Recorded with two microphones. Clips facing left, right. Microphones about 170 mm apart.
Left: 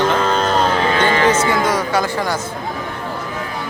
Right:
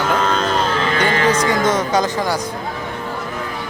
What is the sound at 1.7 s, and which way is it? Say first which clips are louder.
Speech: right 1 dB; 20° right (ahead or behind).